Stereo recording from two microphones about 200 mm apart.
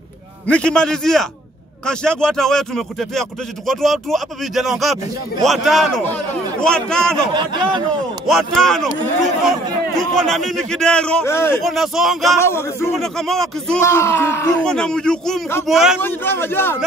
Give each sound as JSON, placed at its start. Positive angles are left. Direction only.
{"t": 0.5, "sound": "speech", "side_deg": 5}
{"t": 7.3, "sound": "speech", "side_deg": -25}
{"t": 8.3, "sound": "speech", "side_deg": 0}
{"t": 11.6, "sound": "speech", "side_deg": 0}
{"t": 12.4, "sound": "a man's voice", "side_deg": 10}
{"t": 12.9, "sound": "speech", "side_deg": 0}
{"t": 13.8, "sound": "speech", "side_deg": 15}
{"t": 16.0, "sound": "a man's voice", "side_deg": 10}